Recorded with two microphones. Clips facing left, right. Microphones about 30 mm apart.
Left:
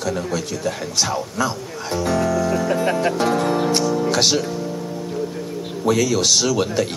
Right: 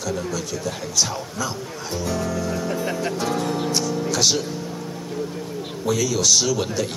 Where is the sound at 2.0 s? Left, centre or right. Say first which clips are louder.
Left 6 dB; left.